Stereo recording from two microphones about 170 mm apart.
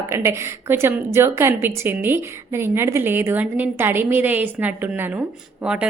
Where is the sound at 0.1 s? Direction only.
15° right (ahead or behind).